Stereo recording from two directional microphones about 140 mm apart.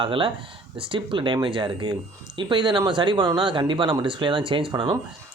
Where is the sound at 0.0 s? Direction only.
40° right (ahead or behind).